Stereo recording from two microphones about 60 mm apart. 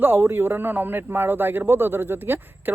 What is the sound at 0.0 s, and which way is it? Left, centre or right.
A man's voice, right.